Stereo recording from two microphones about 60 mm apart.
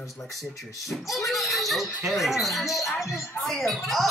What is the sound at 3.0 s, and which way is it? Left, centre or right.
Speech, left.